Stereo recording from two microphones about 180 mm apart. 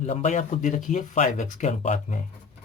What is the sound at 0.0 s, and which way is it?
A man's voice, 40° left (ahead or behind).